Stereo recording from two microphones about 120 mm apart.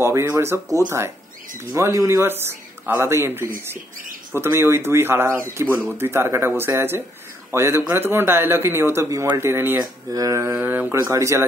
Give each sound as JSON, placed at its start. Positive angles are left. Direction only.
{"t": 0.0, "sound": "speech", "side_deg": -20}
{"t": 10.1, "sound": "speech", "side_deg": -30}
{"t": 10.6, "sound": "speech", "side_deg": -15}